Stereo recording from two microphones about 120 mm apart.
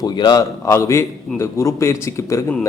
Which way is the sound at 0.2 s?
30° left (ahead or behind).